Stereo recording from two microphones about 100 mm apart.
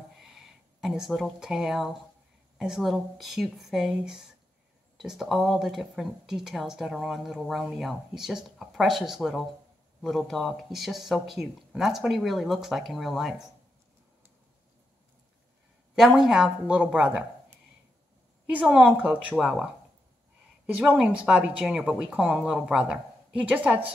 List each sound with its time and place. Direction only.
0.2 s speech: 5° right (ahead or behind)
16.2 s speech: 5° right (ahead or behind)
18.5 s speech: 15° right (ahead or behind)